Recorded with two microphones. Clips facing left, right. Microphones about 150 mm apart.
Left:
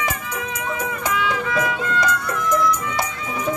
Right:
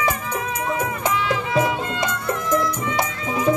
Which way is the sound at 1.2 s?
30° right (ahead or behind).